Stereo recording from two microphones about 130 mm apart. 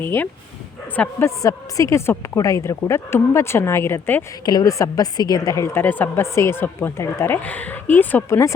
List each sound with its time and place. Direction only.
0.0 s speech: 15° left (ahead or behind)
1.4 s a woman's voice: 25° left (ahead or behind)
4.4 s a woman's voice: 30° left (ahead or behind)